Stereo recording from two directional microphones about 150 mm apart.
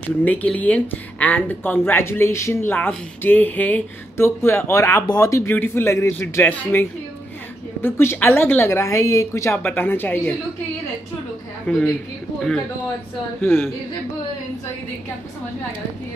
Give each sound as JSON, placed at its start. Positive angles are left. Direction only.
{"t": 0.2, "sound": "speech", "side_deg": 10}
{"t": 11.6, "sound": "speech", "side_deg": 5}
{"t": 13.4, "sound": "speech", "side_deg": 15}